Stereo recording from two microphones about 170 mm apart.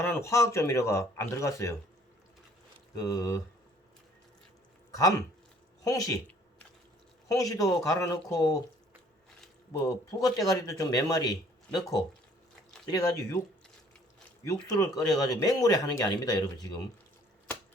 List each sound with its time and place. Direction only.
0.0 s speech: 15° left (ahead or behind)
3.0 s a man's voice: 20° left (ahead or behind)
4.9 s a man's voice: 20° left (ahead or behind)
7.3 s a man's voice: 20° left (ahead or behind)
9.7 s a man's voice: 20° left (ahead or behind)
12.9 s a man's voice: 20° left (ahead or behind)
14.4 s a man's voice: 20° left (ahead or behind)